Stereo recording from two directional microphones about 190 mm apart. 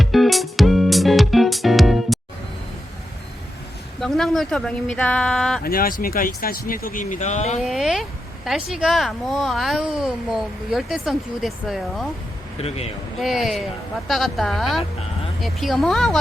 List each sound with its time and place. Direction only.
0.0 s music: centre (ahead or behind)
4.0 s speech: centre (ahead or behind)
5.6 s speech: 50° left (ahead or behind)
7.6 s speech: centre (ahead or behind)
12.6 s speech: 30° left (ahead or behind)
13.1 s speech: centre (ahead or behind)